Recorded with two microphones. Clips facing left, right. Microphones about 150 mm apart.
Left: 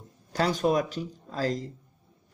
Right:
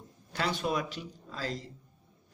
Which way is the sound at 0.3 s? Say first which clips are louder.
Left 7 dB; 40° left (ahead or behind).